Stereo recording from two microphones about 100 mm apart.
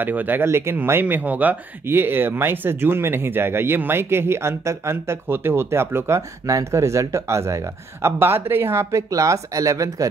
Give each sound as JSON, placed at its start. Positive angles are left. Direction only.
{"t": 0.0, "sound": "speech", "side_deg": -20}